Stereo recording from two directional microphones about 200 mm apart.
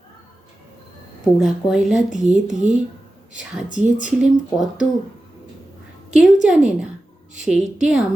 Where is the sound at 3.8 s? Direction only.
5° right (ahead or behind).